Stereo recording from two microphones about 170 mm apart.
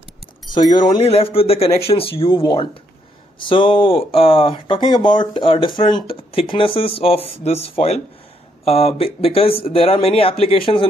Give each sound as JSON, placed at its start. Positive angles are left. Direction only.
{"t": 0.7, "sound": "speech", "side_deg": 30}